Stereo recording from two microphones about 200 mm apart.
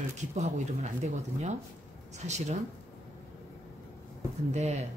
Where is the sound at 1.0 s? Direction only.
35° right (ahead or behind).